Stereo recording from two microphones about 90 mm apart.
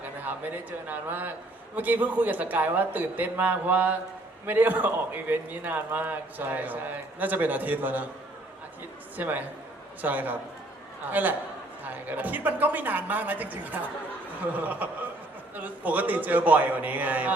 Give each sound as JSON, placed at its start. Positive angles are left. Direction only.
{"t": 0.9, "sound": "a man's voice", "side_deg": -20}
{"t": 9.1, "sound": "a man's voice", "side_deg": -20}